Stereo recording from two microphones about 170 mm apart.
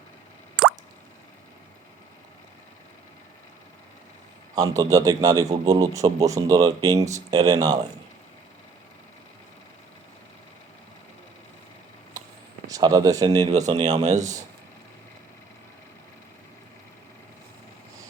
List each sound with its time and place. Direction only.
4.5 s a man's voice: 20° right (ahead or behind)
12.6 s speech: 20° right (ahead or behind)
13.5 s speech: 40° right (ahead or behind)
14.2 s a man's voice: 20° right (ahead or behind)